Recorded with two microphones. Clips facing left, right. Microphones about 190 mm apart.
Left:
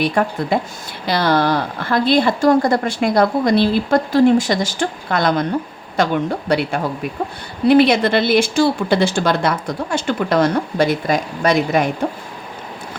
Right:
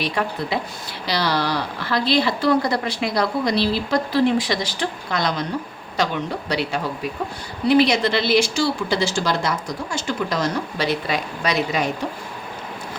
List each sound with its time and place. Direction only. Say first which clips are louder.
0.0 s a woman's voice: left 6 dB; 50° left (ahead or behind)